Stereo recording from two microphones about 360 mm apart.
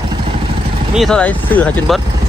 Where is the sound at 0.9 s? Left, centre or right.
Centre.